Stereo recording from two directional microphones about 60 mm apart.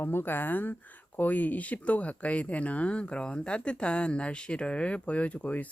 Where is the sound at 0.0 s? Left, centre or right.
Left.